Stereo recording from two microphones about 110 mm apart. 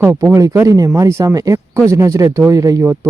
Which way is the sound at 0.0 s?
25° right (ahead or behind).